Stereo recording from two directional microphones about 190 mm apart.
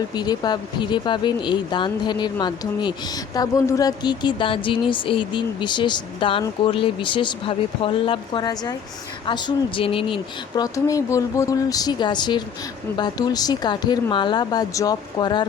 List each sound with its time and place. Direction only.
0.1 s speech: 20° left (ahead or behind)